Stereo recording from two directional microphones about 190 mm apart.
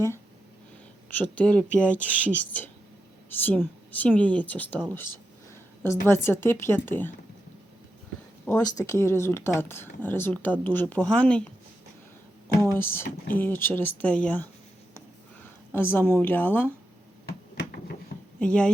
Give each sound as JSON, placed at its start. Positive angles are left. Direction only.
{"t": 1.2, "sound": "speech", "side_deg": 5}
{"t": 5.8, "sound": "speech", "side_deg": 15}
{"t": 8.7, "sound": "speech", "side_deg": 15}
{"t": 12.5, "sound": "speech", "side_deg": 10}
{"t": 15.7, "sound": "speech", "side_deg": 10}
{"t": 17.6, "sound": "a sound", "side_deg": 55}
{"t": 18.3, "sound": "speech", "side_deg": 5}